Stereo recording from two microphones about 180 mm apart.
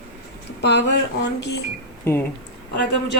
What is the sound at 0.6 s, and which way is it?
Speech, 70° left (ahead or behind).